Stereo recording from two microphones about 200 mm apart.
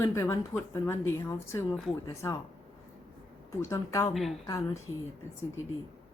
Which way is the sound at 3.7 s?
15° left (ahead or behind).